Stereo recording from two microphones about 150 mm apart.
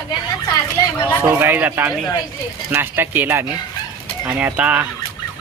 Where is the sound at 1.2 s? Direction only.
15° right (ahead or behind).